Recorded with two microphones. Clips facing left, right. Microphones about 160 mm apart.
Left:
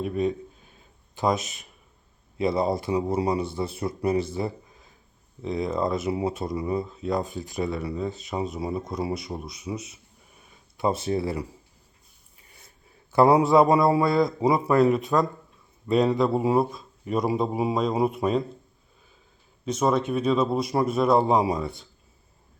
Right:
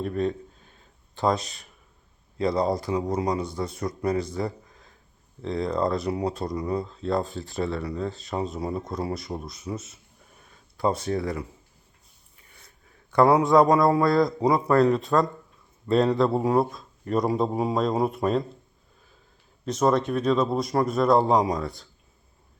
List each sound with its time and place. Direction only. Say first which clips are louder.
0.0 s speech: left 1 dB; 10° left (ahead or behind)
8.5 s speech: even; centre (ahead or behind)
10.8 s speech: even; 25° left (ahead or behind)
13.1 s a sound: left 1 dB; 5° left (ahead or behind)
13.4 s speech: even; 5° left (ahead or behind)
14.5 s speech: even; 15° left (ahead or behind)
15.9 s speech: even; centre (ahead or behind)
19.6 s speech: right 1 dB; centre (ahead or behind)